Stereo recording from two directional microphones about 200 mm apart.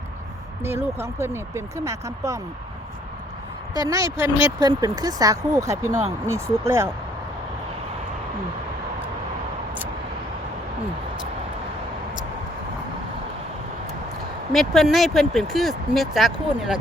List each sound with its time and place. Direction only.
0.6 s speech: 10° right (ahead or behind)
3.8 s speech: 15° right (ahead or behind)
14.5 s speech: centre (ahead or behind)